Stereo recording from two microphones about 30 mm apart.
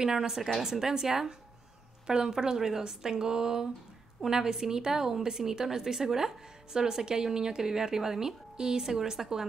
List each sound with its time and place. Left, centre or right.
0.0 s a woman's voice: centre
0.3 s a woman's voice: centre
2.0 s a woman's voice: right